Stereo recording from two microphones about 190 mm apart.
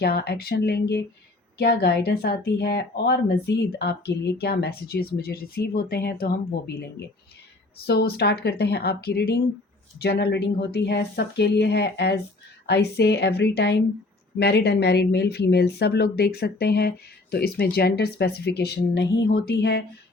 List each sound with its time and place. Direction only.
0.0 s speech: 55° left (ahead or behind)